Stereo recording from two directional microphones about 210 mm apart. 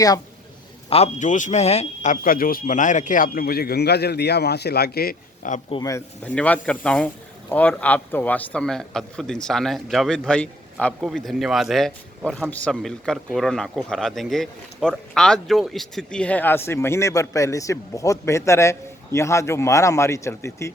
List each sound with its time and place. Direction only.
0.9 s speech: 30° left (ahead or behind)
5.7 s a man's voice: 15° left (ahead or behind)